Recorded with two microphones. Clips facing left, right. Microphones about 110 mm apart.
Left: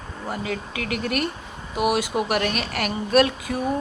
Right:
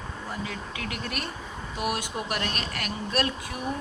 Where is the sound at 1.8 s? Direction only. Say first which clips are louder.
Left 8 dB; 90° left.